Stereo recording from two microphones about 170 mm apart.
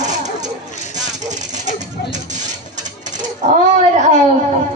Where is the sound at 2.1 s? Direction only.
45° right (ahead or behind).